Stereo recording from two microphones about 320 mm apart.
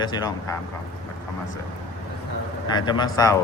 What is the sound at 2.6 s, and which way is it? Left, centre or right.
Speech, centre.